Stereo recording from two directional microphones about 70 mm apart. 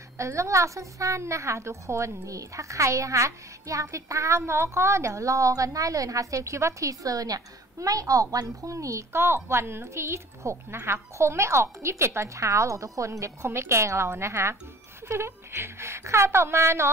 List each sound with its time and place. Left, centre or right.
0.2 s a woman's voice: right